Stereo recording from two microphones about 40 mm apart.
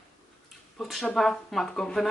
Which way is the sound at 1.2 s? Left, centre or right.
Centre.